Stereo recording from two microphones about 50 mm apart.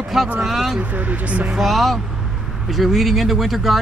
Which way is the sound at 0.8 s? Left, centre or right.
Right.